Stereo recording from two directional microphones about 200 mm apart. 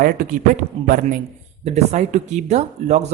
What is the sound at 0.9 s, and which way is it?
Speech, 45° right (ahead or behind).